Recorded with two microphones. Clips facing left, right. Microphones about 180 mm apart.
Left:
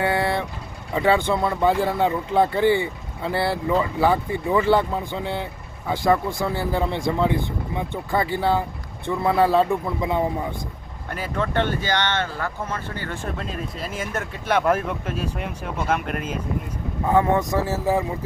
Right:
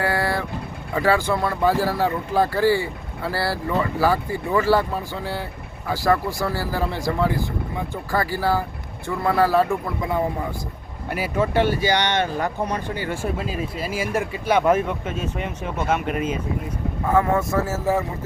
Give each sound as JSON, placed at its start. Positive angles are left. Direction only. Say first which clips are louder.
{"t": 0.0, "sound": "vehicle", "louder": "left 1 dB", "side_deg": 20}
{"t": 0.9, "sound": "speech", "louder": "left 1 dB", "side_deg": 20}
{"t": 11.1, "sound": "speech", "louder": "right 3 dB", "side_deg": -10}
{"t": 17.1, "sound": "speech", "louder": "left 1 dB", "side_deg": 20}